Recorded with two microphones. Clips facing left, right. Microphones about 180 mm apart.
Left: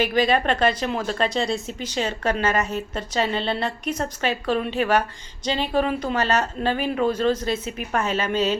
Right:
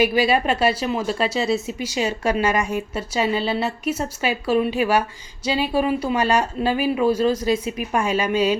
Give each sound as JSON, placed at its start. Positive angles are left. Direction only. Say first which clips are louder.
{"t": 0.0, "sound": "speech", "louder": "right 2 dB", "side_deg": -10}